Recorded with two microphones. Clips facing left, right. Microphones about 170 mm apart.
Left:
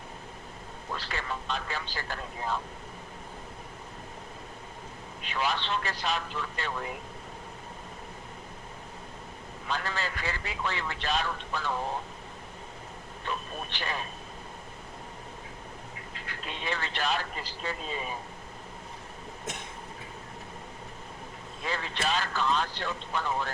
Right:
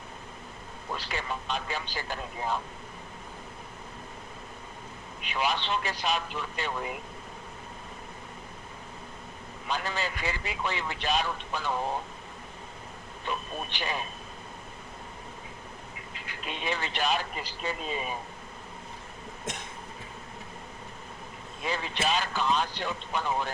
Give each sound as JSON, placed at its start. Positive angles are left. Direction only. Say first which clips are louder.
{"t": 0.9, "sound": "a man's voice", "louder": "right 1 dB", "side_deg": -15}
{"t": 5.2, "sound": "a man's voice", "louder": "right 1 dB", "side_deg": -15}
{"t": 9.6, "sound": "a man's voice", "louder": "right 1 dB", "side_deg": -20}
{"t": 13.7, "sound": "a man's voice", "louder": "right 1 dB", "side_deg": -15}
{"t": 16.1, "sound": "a man's voice", "louder": "right 2 dB", "side_deg": -10}
{"t": 21.6, "sound": "a man's voice", "louder": "right 2 dB", "side_deg": -15}